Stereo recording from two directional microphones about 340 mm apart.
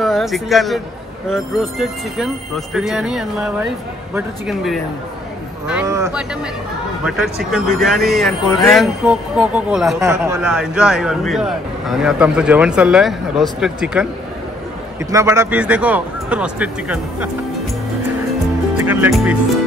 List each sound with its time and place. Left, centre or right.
0.0 s a man's voice: centre
15.0 s a man's voice: centre
18.9 s a man's voice: centre